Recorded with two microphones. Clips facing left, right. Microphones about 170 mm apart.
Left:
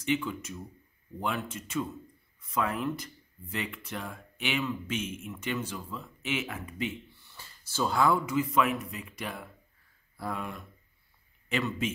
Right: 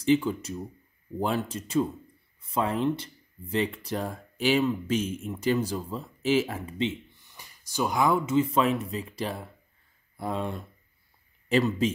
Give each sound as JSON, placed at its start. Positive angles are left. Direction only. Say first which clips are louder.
{"t": 0.0, "sound": "speech", "louder": "right 7 dB", "side_deg": -35}